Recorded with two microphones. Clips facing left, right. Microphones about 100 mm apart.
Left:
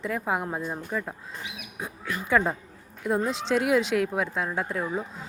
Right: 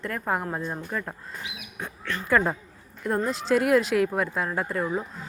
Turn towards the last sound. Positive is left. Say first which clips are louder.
# right 2 dB
turn(degrees=0)  # may be behind; listen again after turning